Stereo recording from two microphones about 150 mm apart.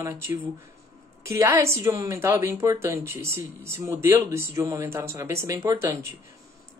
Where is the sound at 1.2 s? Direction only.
20° right (ahead or behind).